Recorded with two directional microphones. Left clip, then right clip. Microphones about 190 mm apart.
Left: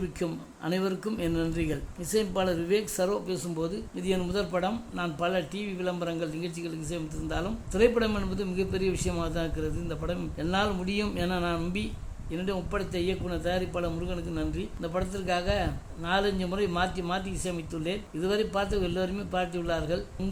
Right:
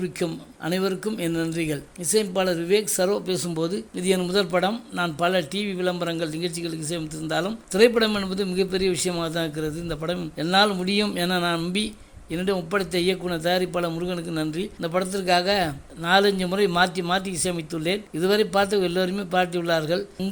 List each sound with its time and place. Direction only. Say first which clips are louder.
0.2 s speech: right 5 dB; 15° right (ahead or behind)